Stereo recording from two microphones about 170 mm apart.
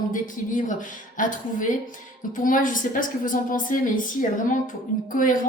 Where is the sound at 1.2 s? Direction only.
50° left (ahead or behind).